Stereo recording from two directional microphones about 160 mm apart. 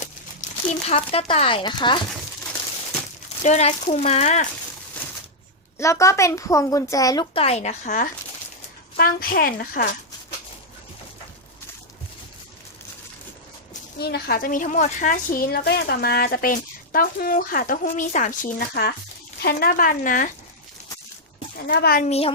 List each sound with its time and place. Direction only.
0.9 s speech: 35° left (ahead or behind)
3.4 s speech: 45° left (ahead or behind)
5.7 s speech: 20° left (ahead or behind)
7.3 s speech: 40° left (ahead or behind)
9.0 s speech: 65° left (ahead or behind)
14.0 s speech: 80° left; by 20.3 s 55° left (ahead or behind)
21.7 s a child's voice: 70° left (ahead or behind)
22.0 s speech: 40° left (ahead or behind)